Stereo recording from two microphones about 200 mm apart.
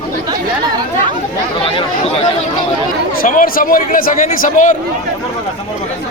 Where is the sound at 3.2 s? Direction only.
45° left (ahead or behind).